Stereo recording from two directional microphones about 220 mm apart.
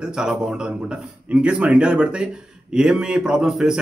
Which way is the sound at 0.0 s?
5° right (ahead or behind).